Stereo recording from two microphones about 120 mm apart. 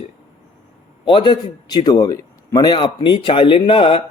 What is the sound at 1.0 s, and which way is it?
A man's voice, 40° left (ahead or behind).